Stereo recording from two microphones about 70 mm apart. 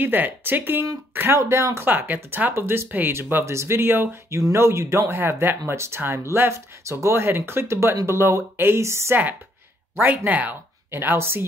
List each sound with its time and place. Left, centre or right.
0.0 s speech: right
1.4 s speech: right
1.9 s speech: right
9.9 s speech: right
10.9 s speech: right